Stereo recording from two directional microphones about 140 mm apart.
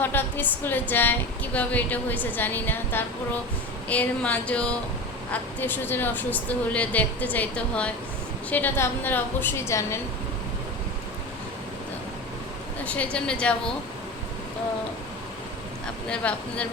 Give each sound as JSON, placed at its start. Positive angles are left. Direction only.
{"t": 0.0, "sound": "a sound", "side_deg": 15}
{"t": 0.6, "sound": "a woman's voice", "side_deg": 15}
{"t": 12.8, "sound": "a woman's voice", "side_deg": 10}
{"t": 16.0, "sound": "a woman's voice", "side_deg": 10}